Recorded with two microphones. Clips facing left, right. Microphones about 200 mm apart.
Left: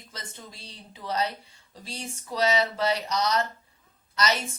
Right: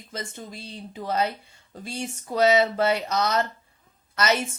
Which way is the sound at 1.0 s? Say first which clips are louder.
Right 3 dB; 50° right (ahead or behind).